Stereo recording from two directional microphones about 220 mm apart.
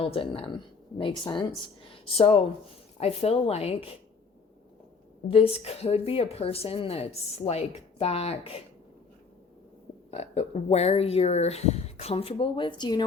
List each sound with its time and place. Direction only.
0.0 s speech: 25° left (ahead or behind)
5.3 s speech: 25° left (ahead or behind)
10.1 s speech: 30° left (ahead or behind)